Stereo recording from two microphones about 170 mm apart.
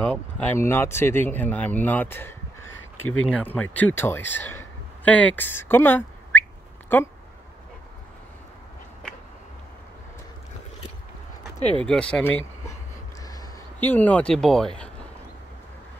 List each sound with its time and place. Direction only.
0.0 s speech: 10° left (ahead or behind)
11.8 s speech: 5° left (ahead or behind)
13.2 s a sound: 20° left (ahead or behind)
13.7 s speech: 10° left (ahead or behind)